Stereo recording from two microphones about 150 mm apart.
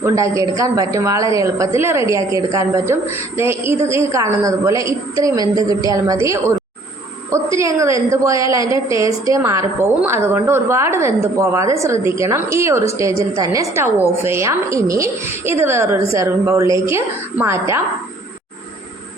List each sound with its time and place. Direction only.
0.0 s a woman's voice: 20° right (ahead or behind)